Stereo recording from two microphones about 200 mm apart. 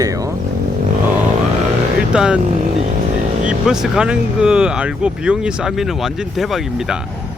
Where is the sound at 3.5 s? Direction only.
5° right (ahead or behind).